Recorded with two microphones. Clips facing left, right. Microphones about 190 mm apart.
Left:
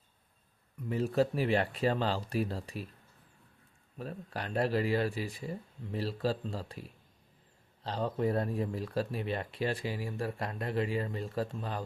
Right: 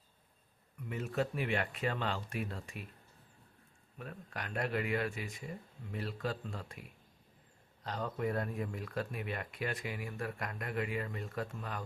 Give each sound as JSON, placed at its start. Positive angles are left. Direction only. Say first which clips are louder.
{"t": 0.9, "sound": "speech", "louder": "left 7 dB", "side_deg": 35}
{"t": 3.9, "sound": "speech", "louder": "left 5 dB", "side_deg": 35}